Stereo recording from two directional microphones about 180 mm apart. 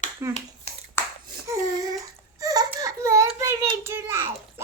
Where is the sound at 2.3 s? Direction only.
20° right (ahead or behind).